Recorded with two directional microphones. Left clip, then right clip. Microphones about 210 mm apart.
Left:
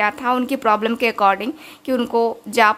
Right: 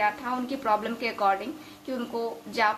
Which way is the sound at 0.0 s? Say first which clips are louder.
Left 8 dB; 45° left (ahead or behind).